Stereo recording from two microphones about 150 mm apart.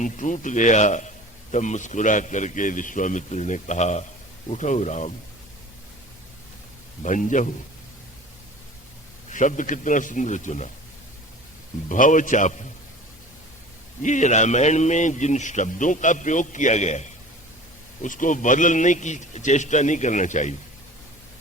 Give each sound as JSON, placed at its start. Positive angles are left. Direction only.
{"t": 0.0, "sound": "a man's voice", "side_deg": 55}
{"t": 7.0, "sound": "a man's voice", "side_deg": 55}
{"t": 9.3, "sound": "a man's voice", "side_deg": 55}
{"t": 11.9, "sound": "a man's voice", "side_deg": 60}
{"t": 14.0, "sound": "a man's voice", "side_deg": 55}